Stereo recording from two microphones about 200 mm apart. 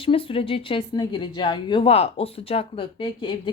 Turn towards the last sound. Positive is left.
turn(degrees=25)  # may be behind; listen again after turning